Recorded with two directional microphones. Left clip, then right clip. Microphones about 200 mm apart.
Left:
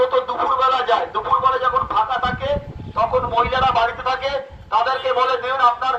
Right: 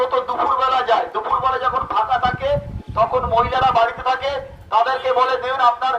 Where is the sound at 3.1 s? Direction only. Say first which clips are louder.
Right 1 dB; 20° right (ahead or behind).